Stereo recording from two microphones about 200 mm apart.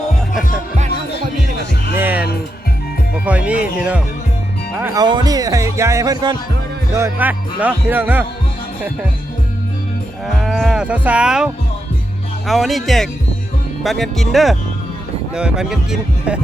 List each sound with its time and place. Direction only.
2.0 s music: 10° right (ahead or behind)
3.2 s speech: 5° right (ahead or behind)
4.9 s speech: 20° right (ahead or behind)
10.2 s moo: centre (ahead or behind)
12.5 s speech: centre (ahead or behind)